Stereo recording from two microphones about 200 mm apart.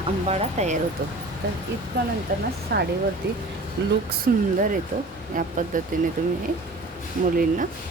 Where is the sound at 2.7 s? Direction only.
55° right (ahead or behind).